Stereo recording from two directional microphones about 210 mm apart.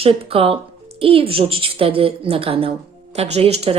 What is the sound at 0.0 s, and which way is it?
A woman's voice, 25° right (ahead or behind).